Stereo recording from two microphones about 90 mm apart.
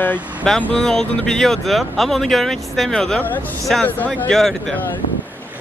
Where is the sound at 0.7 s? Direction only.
5° left (ahead or behind).